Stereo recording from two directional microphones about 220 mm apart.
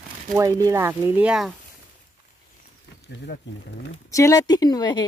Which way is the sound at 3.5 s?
55° left (ahead or behind).